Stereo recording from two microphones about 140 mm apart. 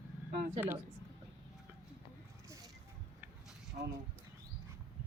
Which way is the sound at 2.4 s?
20° right (ahead or behind).